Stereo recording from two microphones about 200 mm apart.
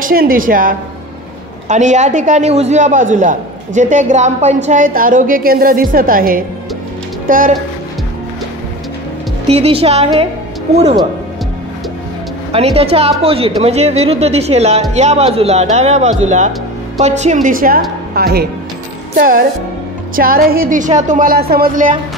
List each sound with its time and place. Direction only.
0.0 s a woman's voice: 45° right (ahead or behind)
9.5 s a man's voice: 30° right (ahead or behind)
12.5 s a man's voice: 30° right (ahead or behind)